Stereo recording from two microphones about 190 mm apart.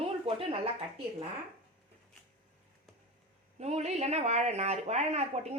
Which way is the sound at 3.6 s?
35° right (ahead or behind).